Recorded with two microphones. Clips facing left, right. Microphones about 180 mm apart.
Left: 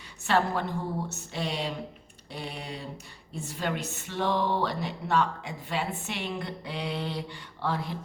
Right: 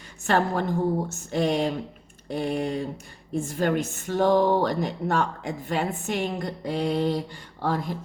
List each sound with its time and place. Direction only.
0.3 s speech: 45° right (ahead or behind)